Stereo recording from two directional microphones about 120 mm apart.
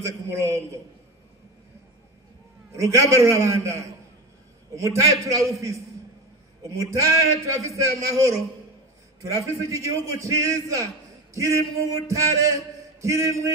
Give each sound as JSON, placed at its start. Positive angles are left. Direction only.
{"t": 0.0, "sound": "a man's voice", "side_deg": -25}
{"t": 2.7, "sound": "a man's voice", "side_deg": -25}
{"t": 12.1, "sound": "a sound", "side_deg": -25}